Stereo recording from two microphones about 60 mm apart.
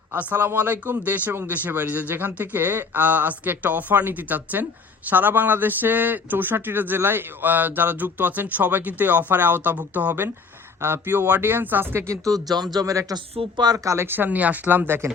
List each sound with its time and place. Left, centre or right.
0.1 s speech: right
10.8 s speech: right
12.0 s speech: right
12.7 s a man's voice: right
14.1 s speech: right